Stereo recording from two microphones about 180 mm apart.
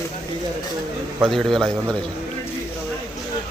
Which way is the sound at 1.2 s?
Centre (ahead or behind).